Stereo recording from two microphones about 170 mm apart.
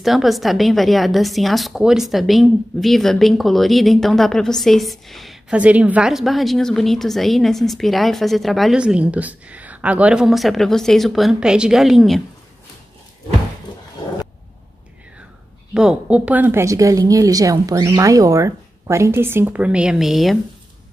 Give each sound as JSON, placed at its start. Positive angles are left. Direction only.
{"t": 0.0, "sound": "a woman's voice", "side_deg": 0}
{"t": 15.7, "sound": "a woman's voice", "side_deg": -5}